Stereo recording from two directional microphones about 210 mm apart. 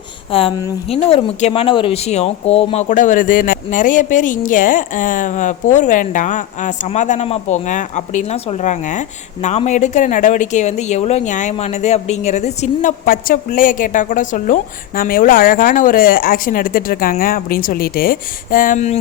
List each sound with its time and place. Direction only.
0.3 s a woman's voice: 25° left (ahead or behind)